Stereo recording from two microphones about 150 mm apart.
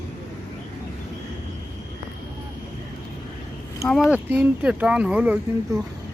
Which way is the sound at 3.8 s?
Centre (ahead or behind).